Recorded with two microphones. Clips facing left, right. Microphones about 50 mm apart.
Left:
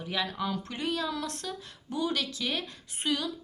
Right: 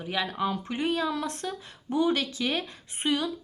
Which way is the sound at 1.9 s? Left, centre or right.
Right.